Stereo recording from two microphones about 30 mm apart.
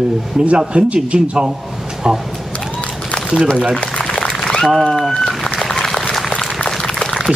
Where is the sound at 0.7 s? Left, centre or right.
Right.